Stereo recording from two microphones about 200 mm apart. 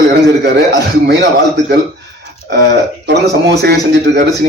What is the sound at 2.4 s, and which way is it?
Speech, 60° right (ahead or behind).